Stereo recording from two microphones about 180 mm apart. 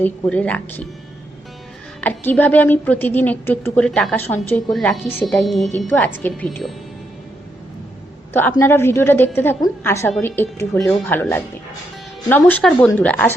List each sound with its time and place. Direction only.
0.0 s a woman's voice: 5° left (ahead or behind)
2.0 s a woman's voice: 10° left (ahead or behind)
8.3 s a woman's voice: 10° left (ahead or behind)